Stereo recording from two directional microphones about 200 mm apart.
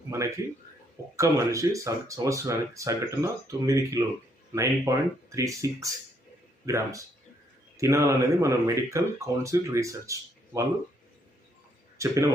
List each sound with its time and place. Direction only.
0.1 s speech: 15° right (ahead or behind)
11.9 s speech: 15° right (ahead or behind)